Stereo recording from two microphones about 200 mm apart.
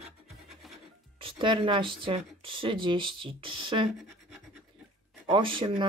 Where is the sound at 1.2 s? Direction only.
25° right (ahead or behind).